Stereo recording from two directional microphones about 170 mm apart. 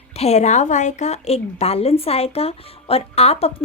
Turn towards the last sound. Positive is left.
turn(degrees=35)  # may be behind; listen again after turning